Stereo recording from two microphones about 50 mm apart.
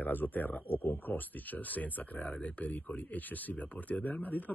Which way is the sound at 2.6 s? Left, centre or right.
Left.